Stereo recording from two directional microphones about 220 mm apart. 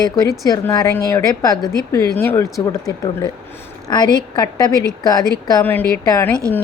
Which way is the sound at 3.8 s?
20° left (ahead or behind).